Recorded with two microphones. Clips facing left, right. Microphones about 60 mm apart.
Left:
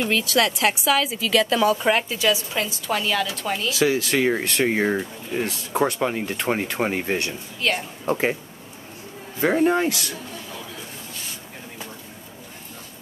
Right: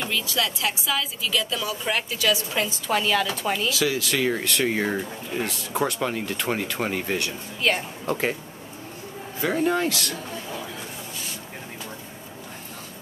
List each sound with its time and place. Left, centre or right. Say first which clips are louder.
0.6 s a woman's voice: left 6 dB; left
1.8 s speech: left 5 dB; left
2.3 s a woman's voice: even; centre
3.7 s speech: left 4 dB; left
5.9 s speech: left 3 dB; centre
6.2 s speech: left 2 dB; left
7.6 s a woman's voice: even; centre
8.1 s speech: left 3 dB; left
9.4 s speech: left 4 dB; left